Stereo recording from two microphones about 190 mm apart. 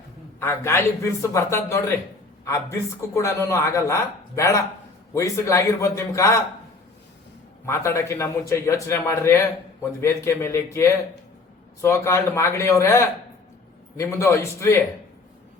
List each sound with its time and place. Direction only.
0.3 s a man's voice: 15° left (ahead or behind)
7.6 s a man's voice: 15° left (ahead or behind)